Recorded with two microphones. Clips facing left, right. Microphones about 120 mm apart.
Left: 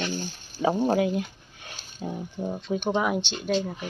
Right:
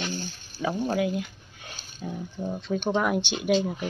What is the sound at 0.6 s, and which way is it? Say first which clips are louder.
Speech: left 3 dB; 30° left (ahead or behind).